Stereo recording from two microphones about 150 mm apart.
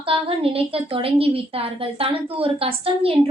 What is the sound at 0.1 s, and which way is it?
A woman's voice, 35° right (ahead or behind).